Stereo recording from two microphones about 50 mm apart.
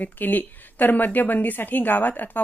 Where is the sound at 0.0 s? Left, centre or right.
Left.